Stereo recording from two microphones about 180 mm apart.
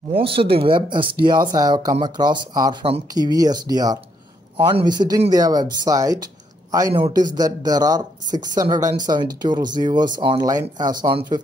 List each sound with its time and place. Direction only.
0.2 s speech: 30° right (ahead or behind)